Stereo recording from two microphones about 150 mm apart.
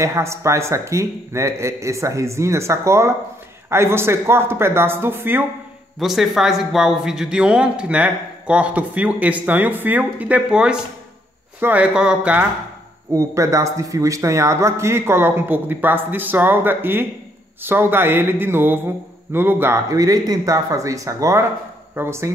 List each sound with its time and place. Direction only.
0.0 s a man's voice: 20° right (ahead or behind)
5.9 s speech: centre (ahead or behind)
13.1 s a man's voice: 20° right (ahead or behind)